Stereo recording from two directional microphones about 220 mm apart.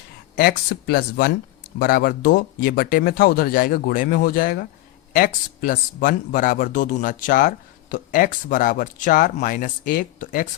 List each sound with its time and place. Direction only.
0.3 s speech: 45° left (ahead or behind)